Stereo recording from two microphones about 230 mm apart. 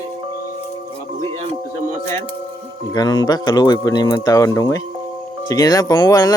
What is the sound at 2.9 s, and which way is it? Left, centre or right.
Speech, centre.